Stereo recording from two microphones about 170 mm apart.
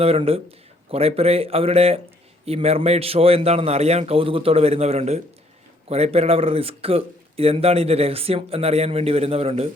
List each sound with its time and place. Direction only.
0.0 s speech: 35° right (ahead or behind)